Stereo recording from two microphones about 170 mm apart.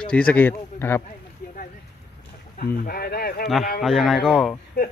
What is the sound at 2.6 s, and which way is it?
Speech, 60° left (ahead or behind).